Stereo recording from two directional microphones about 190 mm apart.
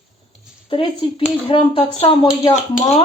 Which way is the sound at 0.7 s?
25° left (ahead or behind).